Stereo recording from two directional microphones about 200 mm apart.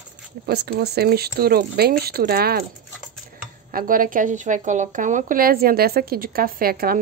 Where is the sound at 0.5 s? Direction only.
55° right (ahead or behind).